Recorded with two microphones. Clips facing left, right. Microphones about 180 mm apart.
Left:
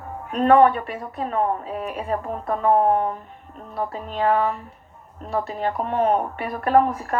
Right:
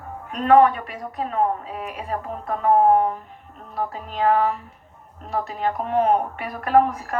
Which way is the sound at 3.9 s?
40° left (ahead or behind).